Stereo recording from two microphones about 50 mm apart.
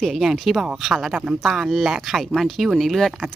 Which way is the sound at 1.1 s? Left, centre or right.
Right.